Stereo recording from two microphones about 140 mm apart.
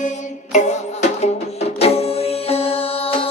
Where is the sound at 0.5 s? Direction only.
55° left (ahead or behind).